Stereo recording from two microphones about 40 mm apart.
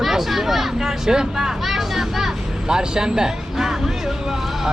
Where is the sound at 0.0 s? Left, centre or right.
Centre.